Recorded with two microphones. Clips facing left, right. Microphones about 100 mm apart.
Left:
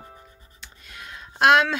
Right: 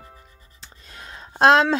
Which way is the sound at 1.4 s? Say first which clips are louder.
Right 2 dB; 30° right (ahead or behind).